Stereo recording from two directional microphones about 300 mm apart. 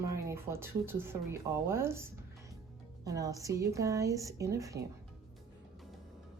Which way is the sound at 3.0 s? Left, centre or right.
Centre.